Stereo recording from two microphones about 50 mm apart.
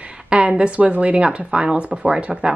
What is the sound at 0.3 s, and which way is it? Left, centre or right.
Speech, right.